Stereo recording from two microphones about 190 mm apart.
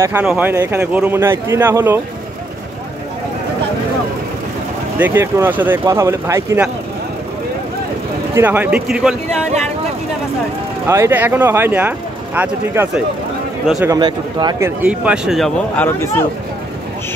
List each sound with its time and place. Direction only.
0.0 s speech: 10° right (ahead or behind)
4.9 s speech: 10° right (ahead or behind)
8.4 s speech: 10° right (ahead or behind)
10.9 s speech: 15° right (ahead or behind)
13.7 s a man's voice: 20° right (ahead or behind)
14.8 s a man's voice: 5° right (ahead or behind); by 16.3 s 10° left (ahead or behind)